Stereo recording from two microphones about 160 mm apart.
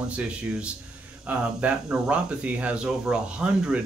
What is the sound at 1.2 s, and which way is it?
Speech, 5° right (ahead or behind).